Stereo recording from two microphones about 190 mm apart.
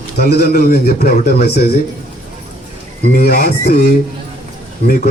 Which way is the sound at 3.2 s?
55° left (ahead or behind).